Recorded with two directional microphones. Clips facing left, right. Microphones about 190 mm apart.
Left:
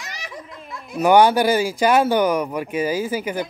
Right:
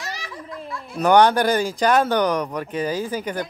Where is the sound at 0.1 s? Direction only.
15° left (ahead or behind).